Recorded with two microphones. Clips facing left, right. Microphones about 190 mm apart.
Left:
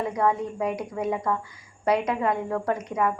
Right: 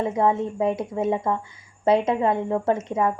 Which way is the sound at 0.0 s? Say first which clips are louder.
Right 3 dB; 25° right (ahead or behind).